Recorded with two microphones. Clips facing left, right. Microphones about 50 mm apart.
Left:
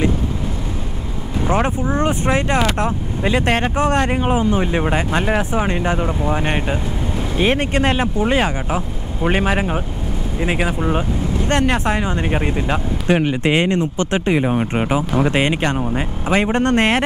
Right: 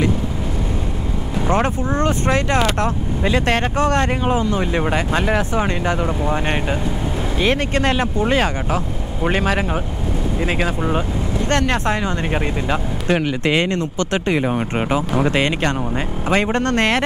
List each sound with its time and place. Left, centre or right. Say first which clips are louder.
1.5 s speech: even; centre
7.3 s speech: left 2 dB; left; by 11.1 s centre
11.4 s speech: left 1 dB; centre
13.3 s speech: left 2 dB; left
14.4 s speech: left 2 dB; centre
15.8 s speech: left 1 dB; centre
16.5 s speech: left 2 dB; centre